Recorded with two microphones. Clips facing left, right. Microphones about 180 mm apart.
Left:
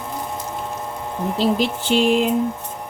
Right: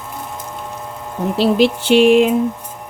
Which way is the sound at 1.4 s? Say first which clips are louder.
Right 6 dB; 75° right (ahead or behind).